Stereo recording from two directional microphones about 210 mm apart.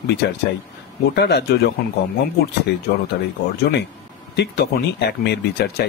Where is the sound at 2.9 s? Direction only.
55° left (ahead or behind).